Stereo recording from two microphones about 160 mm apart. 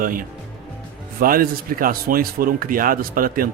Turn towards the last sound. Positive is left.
turn(degrees=-60)  # may be behind; listen again after turning